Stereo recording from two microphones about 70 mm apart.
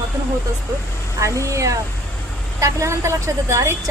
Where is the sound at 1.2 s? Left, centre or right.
Right.